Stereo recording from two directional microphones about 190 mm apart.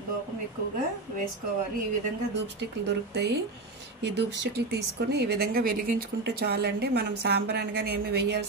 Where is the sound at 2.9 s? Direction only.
60° right (ahead or behind).